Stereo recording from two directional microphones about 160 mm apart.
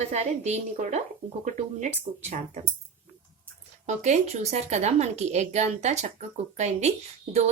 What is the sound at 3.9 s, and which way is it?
A woman's voice, 45° right (ahead or behind).